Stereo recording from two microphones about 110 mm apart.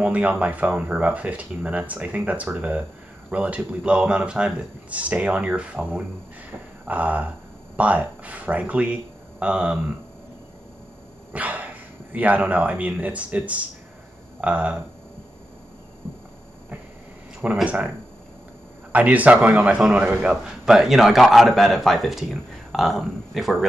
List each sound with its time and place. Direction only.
0.0 s speech: 15° right (ahead or behind)
11.3 s speech: 15° right (ahead or behind)
17.4 s speech: 10° right (ahead or behind)
18.9 s a man's voice: 15° right (ahead or behind)